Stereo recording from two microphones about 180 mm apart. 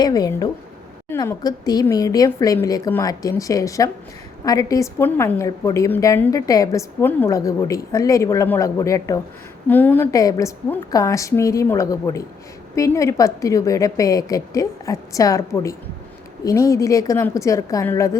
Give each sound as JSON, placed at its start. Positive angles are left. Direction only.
{"t": 0.0, "sound": "a woman's voice", "side_deg": 20}